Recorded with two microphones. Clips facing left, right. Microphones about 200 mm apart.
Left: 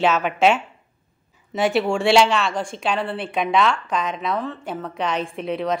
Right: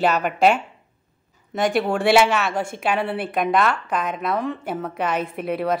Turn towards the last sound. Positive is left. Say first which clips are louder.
# right 1 dB
turn(degrees=-5)  # may be behind; listen again after turning